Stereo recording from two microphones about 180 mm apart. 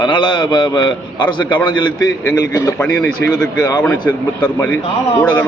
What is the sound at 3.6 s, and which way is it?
Speech, 20° left (ahead or behind).